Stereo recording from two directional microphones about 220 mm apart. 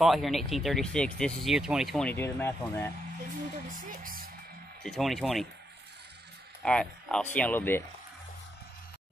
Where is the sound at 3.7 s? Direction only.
40° right (ahead or behind).